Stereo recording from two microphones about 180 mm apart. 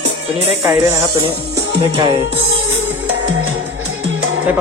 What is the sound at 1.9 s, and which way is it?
Music, 30° right (ahead or behind).